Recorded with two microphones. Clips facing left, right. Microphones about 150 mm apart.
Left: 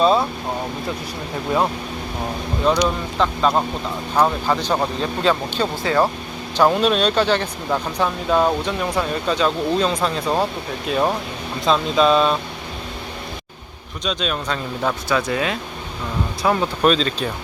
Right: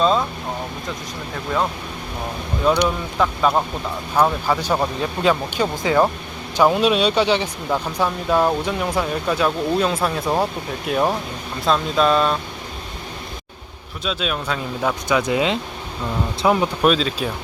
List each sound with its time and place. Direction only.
0.0 s speech: 10° left (ahead or behind)
2.8 s speech: 10° right (ahead or behind)
7.7 s speech: centre (ahead or behind)
14.0 s speech: 5° right (ahead or behind)
15.1 s speech: 20° right (ahead or behind)
16.8 s speech: 5° right (ahead or behind)